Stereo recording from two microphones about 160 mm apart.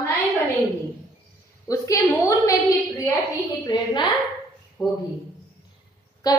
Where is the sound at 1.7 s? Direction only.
20° left (ahead or behind).